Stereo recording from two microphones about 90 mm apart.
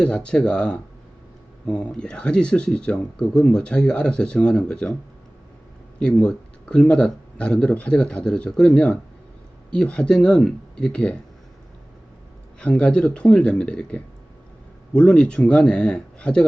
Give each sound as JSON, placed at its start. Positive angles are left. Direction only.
{"t": 0.0, "sound": "speech", "side_deg": 10}
{"t": 6.0, "sound": "speech", "side_deg": 10}
{"t": 12.5, "sound": "speech", "side_deg": 10}